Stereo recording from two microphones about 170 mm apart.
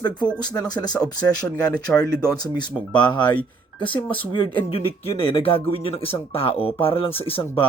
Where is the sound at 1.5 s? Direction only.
5° left (ahead or behind).